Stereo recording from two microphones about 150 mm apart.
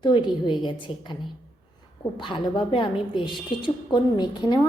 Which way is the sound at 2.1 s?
35° left (ahead or behind).